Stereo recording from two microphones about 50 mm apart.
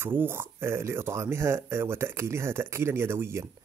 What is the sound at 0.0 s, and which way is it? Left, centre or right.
Speech, right.